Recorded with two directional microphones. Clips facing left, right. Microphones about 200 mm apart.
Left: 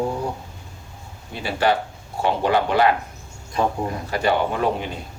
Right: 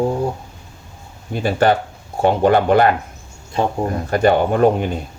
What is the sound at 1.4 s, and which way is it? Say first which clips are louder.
Speech: right 5 dB; 45° right (ahead or behind).